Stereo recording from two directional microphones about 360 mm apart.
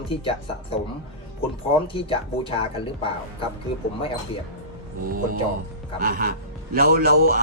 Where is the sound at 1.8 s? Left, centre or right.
Centre.